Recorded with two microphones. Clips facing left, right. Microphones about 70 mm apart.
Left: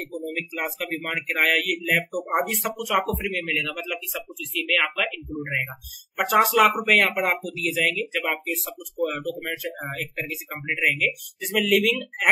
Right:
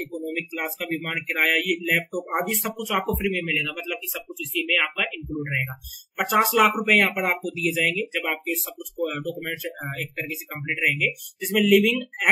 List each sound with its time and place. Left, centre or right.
0.0 s speech: centre